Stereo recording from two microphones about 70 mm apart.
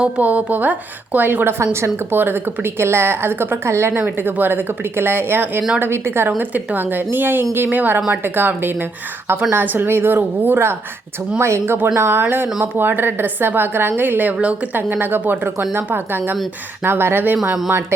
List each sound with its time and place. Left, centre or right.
0.0 s a woman's voice: right
1.6 s a woman's voice: right
4.2 s a woman's voice: right
6.4 s a woman's voice: right